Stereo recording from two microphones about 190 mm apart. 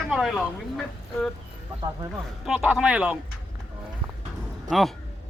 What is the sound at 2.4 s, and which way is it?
Speech, 5° right (ahead or behind).